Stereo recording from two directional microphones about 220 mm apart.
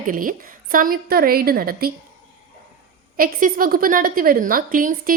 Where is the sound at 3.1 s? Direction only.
40° right (ahead or behind).